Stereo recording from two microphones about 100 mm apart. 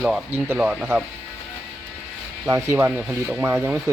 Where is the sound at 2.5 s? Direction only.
30° right (ahead or behind).